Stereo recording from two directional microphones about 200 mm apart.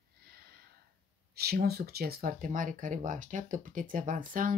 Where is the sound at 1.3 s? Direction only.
50° right (ahead or behind).